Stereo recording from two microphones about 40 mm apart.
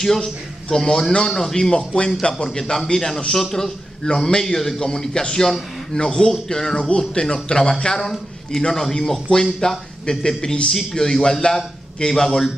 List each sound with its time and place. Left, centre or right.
0.0 s a man's voice: centre
1.8 s speech: left
2.3 s speech: centre
8.0 s speech: centre